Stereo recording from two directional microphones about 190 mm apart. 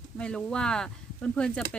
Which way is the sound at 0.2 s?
5° left (ahead or behind).